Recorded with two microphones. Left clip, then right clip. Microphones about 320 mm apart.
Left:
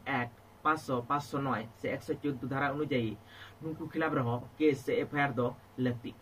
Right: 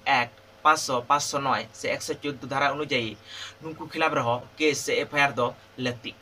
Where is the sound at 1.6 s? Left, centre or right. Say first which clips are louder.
Right 8 dB; right.